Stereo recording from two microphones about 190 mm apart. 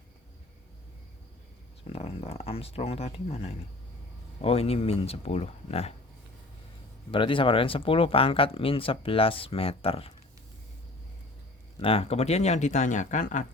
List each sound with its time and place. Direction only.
1.9 s speech: 35° left (ahead or behind)
7.1 s speech: 25° left (ahead or behind)
11.8 s speech: 30° left (ahead or behind)